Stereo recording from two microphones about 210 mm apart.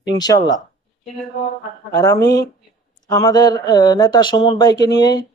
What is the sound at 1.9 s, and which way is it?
Speech, 15° left (ahead or behind).